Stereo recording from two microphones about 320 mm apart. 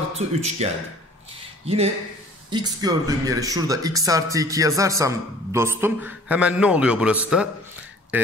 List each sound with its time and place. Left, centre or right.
0.1 s speech: centre
2.5 s speech: centre